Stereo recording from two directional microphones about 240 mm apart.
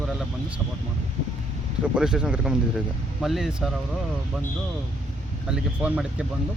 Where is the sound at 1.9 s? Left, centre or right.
Centre.